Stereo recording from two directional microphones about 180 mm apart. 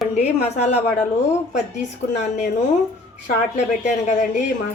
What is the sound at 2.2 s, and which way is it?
Speech, 40° left (ahead or behind).